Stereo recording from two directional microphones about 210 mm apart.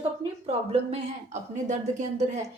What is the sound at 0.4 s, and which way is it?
Speech, 30° right (ahead or behind).